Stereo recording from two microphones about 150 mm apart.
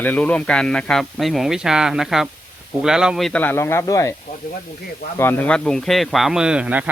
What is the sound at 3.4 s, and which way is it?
Speech, 15° left (ahead or behind).